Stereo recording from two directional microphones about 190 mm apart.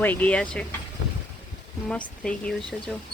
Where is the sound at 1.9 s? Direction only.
5° left (ahead or behind).